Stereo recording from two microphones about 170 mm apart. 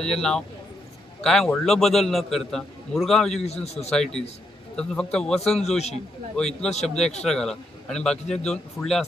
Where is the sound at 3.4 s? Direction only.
40° left (ahead or behind).